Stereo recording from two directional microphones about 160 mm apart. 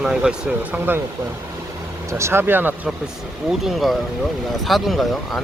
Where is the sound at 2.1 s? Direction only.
15° right (ahead or behind).